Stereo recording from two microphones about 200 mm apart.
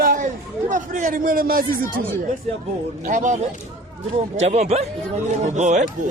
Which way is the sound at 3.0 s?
40° right (ahead or behind).